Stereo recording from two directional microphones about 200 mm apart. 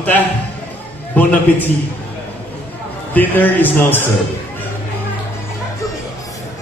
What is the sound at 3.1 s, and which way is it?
Speech, 10° left (ahead or behind).